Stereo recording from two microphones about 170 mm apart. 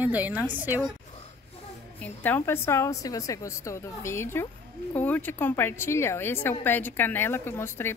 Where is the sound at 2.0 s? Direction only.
10° left (ahead or behind).